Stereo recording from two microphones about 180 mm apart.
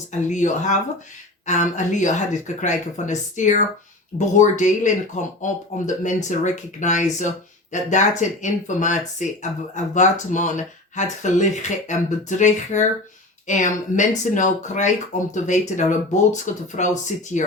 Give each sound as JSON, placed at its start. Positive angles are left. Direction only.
{"t": 0.1, "sound": "speech", "side_deg": 40}